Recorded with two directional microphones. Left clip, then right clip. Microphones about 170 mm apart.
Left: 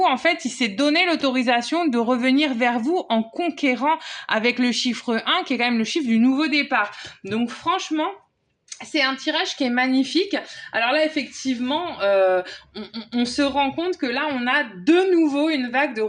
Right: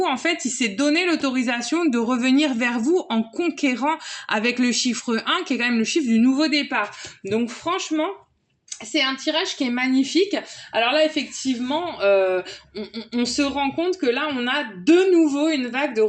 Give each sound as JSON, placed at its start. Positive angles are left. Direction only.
{"t": 0.0, "sound": "speech", "side_deg": 25}